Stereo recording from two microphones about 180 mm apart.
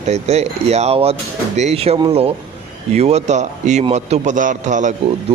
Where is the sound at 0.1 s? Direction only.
35° right (ahead or behind).